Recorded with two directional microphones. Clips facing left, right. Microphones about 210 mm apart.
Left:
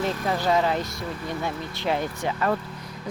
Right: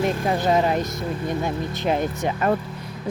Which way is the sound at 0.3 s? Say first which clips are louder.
Right 2 dB; 20° right (ahead or behind).